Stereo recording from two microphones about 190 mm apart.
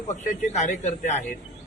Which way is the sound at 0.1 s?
40° left (ahead or behind).